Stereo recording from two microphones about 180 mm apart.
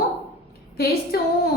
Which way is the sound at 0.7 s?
60° left (ahead or behind).